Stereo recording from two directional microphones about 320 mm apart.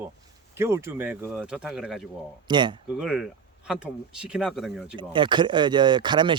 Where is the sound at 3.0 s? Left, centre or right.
Centre.